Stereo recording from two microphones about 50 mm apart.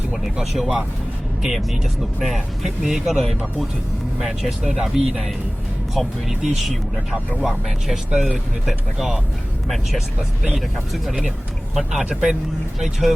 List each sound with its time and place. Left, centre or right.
1.4 s speech: centre
11.7 s speech: centre
12.0 s speech: centre
12.8 s speech: centre